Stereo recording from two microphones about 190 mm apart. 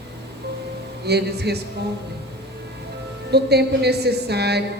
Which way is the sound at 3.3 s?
60° right (ahead or behind).